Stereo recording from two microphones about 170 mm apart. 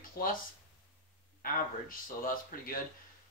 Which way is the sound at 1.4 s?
55° left (ahead or behind).